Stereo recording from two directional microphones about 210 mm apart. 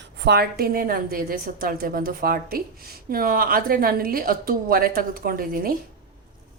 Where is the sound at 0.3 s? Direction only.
50° right (ahead or behind).